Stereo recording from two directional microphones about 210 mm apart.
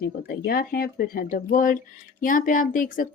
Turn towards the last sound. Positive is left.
turn(degrees=40)  # may be behind; listen again after turning